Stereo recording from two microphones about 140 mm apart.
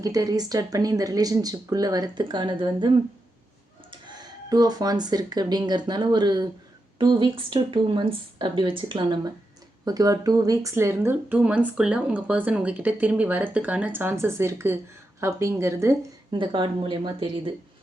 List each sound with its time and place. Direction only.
0.0 s speech: 25° right (ahead or behind)
3.9 s speech: 30° right (ahead or behind)
16.3 s speech: 35° right (ahead or behind)